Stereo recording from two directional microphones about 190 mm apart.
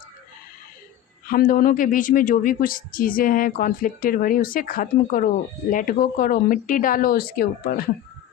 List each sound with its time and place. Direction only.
1.3 s speech: 50° left (ahead or behind)